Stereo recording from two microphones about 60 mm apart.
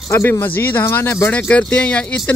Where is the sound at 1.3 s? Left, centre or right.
Left.